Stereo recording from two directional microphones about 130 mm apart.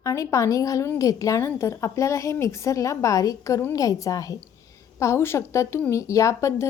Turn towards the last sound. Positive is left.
turn(degrees=25)  # may be behind; listen again after turning